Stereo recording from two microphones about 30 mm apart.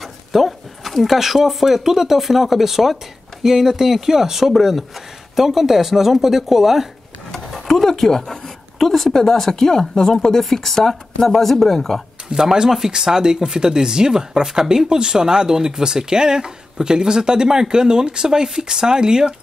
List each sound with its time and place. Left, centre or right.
0.0 s a sound: centre
1.9 s speech: centre
7.8 s a woman's voice: centre
12.4 s speech: centre